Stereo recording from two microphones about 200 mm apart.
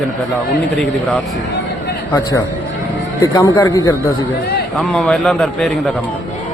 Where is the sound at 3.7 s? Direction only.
10° left (ahead or behind).